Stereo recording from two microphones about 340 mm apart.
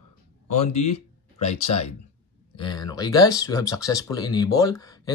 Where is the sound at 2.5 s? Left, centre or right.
Centre.